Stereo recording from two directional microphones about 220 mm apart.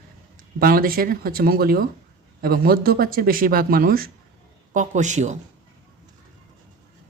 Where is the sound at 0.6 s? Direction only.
40° right (ahead or behind).